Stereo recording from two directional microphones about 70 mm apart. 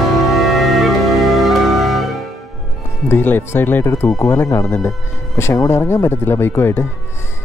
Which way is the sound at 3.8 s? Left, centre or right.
Left.